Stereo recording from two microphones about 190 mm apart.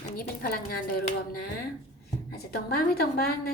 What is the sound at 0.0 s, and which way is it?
A woman's voice, 50° left (ahead or behind).